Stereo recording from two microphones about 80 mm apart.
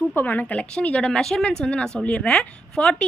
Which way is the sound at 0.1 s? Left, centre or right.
Left.